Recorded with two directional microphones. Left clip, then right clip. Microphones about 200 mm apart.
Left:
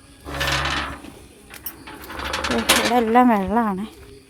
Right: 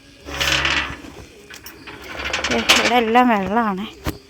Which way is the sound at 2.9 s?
15° left (ahead or behind).